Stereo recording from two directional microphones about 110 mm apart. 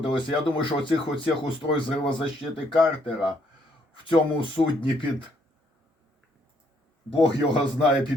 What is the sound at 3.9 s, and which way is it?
Speech, 50° left (ahead or behind).